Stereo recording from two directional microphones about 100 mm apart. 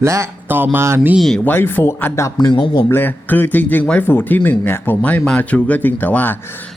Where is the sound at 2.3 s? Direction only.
50° left (ahead or behind).